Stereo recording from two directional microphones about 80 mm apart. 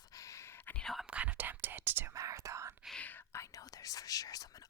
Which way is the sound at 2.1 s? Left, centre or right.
Right.